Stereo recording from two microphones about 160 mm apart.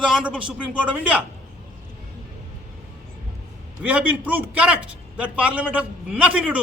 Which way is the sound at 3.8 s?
10° right (ahead or behind).